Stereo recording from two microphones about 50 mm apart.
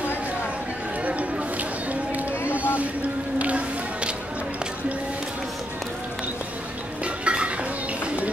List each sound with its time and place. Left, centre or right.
1.9 s run: right
3.3 s music: right
7.2 s dishes: right